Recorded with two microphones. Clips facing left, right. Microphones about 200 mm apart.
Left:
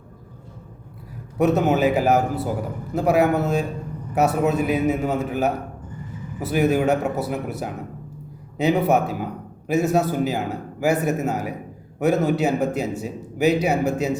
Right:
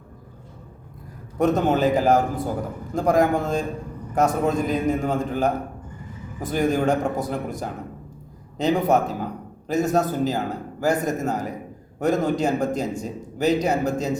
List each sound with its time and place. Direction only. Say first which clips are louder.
1.4 s a man's voice: left 1 dB; 10° left (ahead or behind)